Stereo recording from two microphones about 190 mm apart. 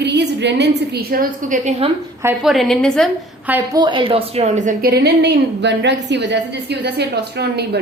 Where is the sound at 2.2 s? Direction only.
Centre (ahead or behind).